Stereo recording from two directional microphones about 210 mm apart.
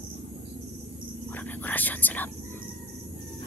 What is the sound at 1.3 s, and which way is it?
Speech, 10° left (ahead or behind).